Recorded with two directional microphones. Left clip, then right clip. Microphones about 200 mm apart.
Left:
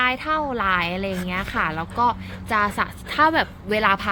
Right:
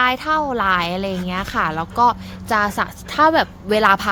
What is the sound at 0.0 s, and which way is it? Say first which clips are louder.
Speech: right 4 dB; 15° right (ahead or behind).